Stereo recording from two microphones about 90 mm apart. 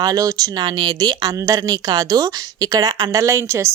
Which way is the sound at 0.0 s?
40° right (ahead or behind).